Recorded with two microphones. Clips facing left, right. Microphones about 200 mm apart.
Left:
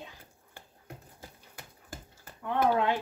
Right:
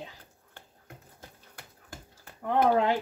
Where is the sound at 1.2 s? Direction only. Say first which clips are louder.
Left 1 dB; 5° left (ahead or behind).